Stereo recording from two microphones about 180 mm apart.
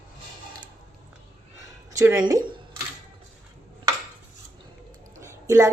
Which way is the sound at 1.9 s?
20° right (ahead or behind).